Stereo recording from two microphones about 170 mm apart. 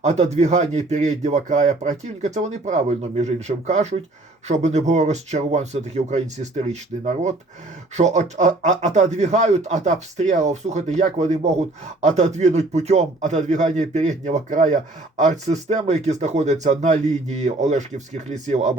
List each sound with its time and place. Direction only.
0.0 s a man's voice: 40° right (ahead or behind)